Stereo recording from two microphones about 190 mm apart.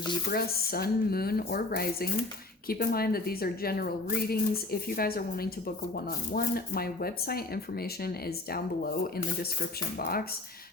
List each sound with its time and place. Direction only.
0.3 s a woman's voice: 55° left (ahead or behind)